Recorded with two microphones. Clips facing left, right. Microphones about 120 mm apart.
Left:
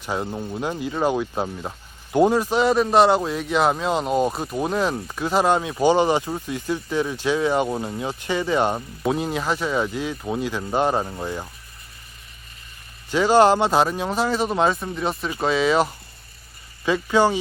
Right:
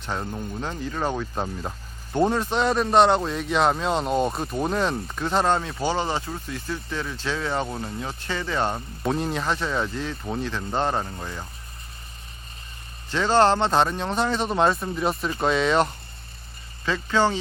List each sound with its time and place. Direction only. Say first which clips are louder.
0.0 s speech: left 3 dB; 10° left (ahead or behind)
9.0 s speech: left 2 dB; 5° left (ahead or behind)
13.1 s speech: left 4 dB; 10° left (ahead or behind)